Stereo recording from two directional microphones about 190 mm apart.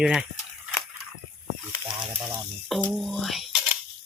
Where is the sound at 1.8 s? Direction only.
25° right (ahead or behind).